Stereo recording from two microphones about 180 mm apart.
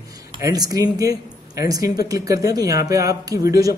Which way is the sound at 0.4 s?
20° right (ahead or behind).